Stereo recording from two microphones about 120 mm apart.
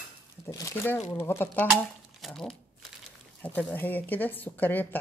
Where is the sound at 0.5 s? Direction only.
25° left (ahead or behind).